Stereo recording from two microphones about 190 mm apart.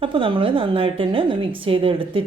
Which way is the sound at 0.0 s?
25° right (ahead or behind).